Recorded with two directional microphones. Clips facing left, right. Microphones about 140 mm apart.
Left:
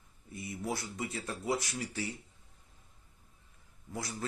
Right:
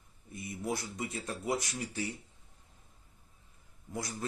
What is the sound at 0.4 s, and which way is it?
Speech, 20° right (ahead or behind).